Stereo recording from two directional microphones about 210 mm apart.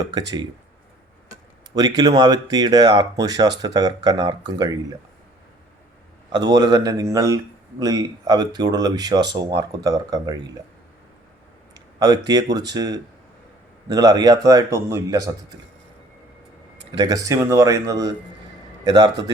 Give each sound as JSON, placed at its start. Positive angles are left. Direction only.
{"t": 0.1, "sound": "speech", "side_deg": -20}
{"t": 1.7, "sound": "a man's voice", "side_deg": -20}
{"t": 6.3, "sound": "a man's voice", "side_deg": -20}
{"t": 11.9, "sound": "a man's voice", "side_deg": -20}
{"t": 17.0, "sound": "a man's voice", "side_deg": -15}